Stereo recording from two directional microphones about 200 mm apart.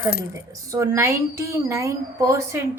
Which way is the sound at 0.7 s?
15° right (ahead or behind).